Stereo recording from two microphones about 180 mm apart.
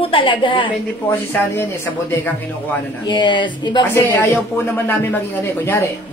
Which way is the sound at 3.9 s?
10° left (ahead or behind).